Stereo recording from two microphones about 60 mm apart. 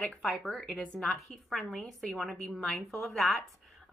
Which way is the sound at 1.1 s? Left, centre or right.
Centre.